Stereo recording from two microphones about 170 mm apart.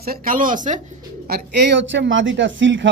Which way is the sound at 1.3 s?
80° right.